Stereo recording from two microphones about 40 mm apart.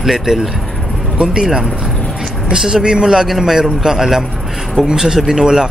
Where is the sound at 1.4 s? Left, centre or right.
Centre.